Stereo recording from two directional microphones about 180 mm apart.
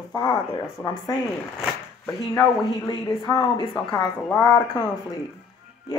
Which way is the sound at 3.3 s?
25° left (ahead or behind).